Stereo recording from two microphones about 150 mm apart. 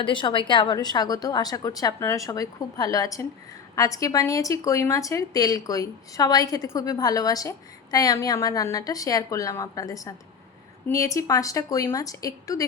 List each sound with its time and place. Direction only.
0.0 s a woman's voice: 35° left (ahead or behind)